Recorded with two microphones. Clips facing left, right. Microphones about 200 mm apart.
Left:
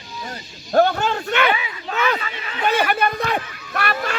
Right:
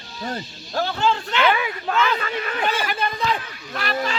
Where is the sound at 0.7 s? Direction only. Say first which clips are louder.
Left 5 dB; 55° left (ahead or behind).